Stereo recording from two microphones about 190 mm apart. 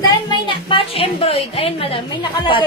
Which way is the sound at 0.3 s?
25° left (ahead or behind).